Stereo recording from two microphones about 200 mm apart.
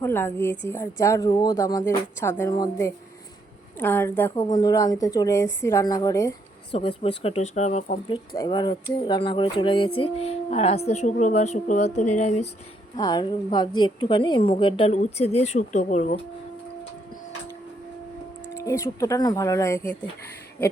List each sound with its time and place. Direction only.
0.0 s a woman's voice: 10° left (ahead or behind)
6.7 s speech: 25° left (ahead or behind)
8.4 s a woman's voice: 20° left (ahead or behind)
13.0 s a woman's voice: 20° left (ahead or behind); by 16.2 s 35° left (ahead or behind)
18.5 s speech: 15° left (ahead or behind)